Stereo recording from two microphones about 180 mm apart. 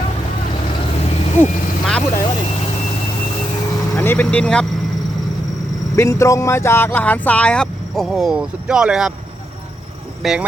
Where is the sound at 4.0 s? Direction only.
10° left (ahead or behind).